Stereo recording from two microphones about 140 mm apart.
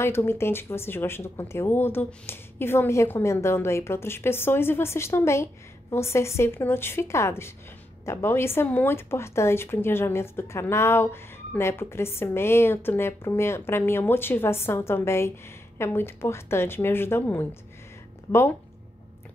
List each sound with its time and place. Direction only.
0.0 s speech: 20° left (ahead or behind)